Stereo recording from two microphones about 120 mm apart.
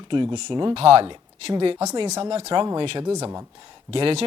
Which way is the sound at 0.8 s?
55° right (ahead or behind).